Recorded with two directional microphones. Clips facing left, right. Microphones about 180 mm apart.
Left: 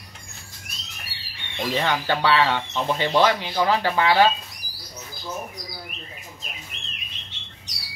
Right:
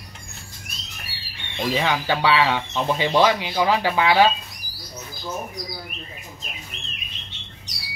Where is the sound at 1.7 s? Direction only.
10° right (ahead or behind).